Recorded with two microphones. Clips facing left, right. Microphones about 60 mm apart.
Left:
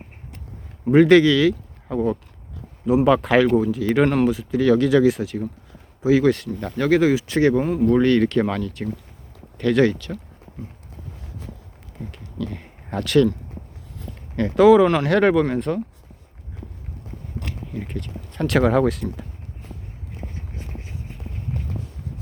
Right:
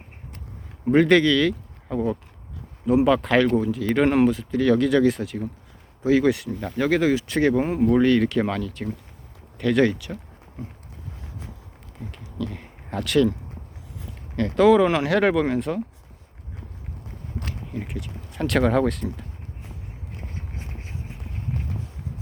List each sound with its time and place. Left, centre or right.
0.9 s speech: centre
4.0 s speech: centre
4.3 s speech: centre
7.6 s speech: right
7.9 s speech: centre
12.1 s speech: centre
14.3 s speech: centre
17.7 s speech: centre